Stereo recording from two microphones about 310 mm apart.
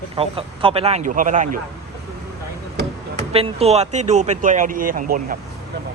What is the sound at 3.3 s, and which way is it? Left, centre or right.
Speech, centre.